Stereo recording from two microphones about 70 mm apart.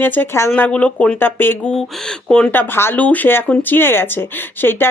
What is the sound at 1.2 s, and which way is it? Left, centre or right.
A woman's voice, left.